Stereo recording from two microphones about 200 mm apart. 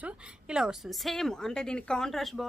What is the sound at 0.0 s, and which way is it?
A woman's voice, 5° right (ahead or behind).